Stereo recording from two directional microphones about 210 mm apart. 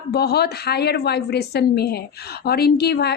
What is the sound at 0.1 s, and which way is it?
A woman's voice, 50° left (ahead or behind).